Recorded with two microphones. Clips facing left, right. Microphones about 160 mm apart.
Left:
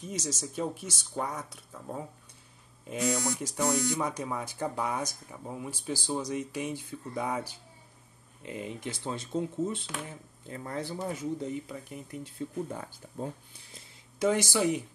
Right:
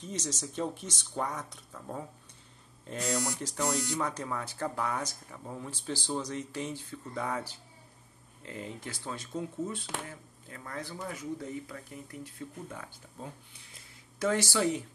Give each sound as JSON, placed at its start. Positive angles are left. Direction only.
{"t": 0.0, "sound": "speech", "side_deg": 10}
{"t": 3.6, "sound": "speech", "side_deg": 20}
{"t": 14.2, "sound": "speech", "side_deg": 15}